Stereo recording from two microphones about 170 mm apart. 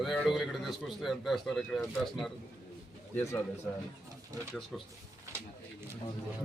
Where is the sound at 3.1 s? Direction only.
15° left (ahead or behind).